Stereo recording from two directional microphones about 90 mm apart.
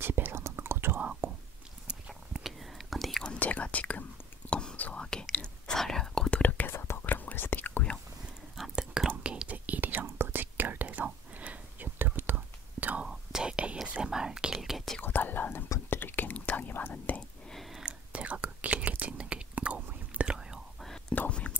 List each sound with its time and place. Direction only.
0.0 s whispering: 25° right (ahead or behind)
1.9 s whispering: 10° right (ahead or behind)
3.3 s whispering: 15° left (ahead or behind)
6.7 s whispering: 25° left (ahead or behind)
8.5 s whispering: 5° right (ahead or behind); by 12.4 s 25° right (ahead or behind)
13.0 s whispering: 10° right (ahead or behind)
15.0 s whispering: 20° left (ahead or behind)
17.5 s whispering: centre (ahead or behind)
21.1 s whispering: 15° left (ahead or behind)